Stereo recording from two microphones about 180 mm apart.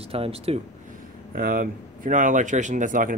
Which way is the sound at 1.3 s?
55° right (ahead or behind).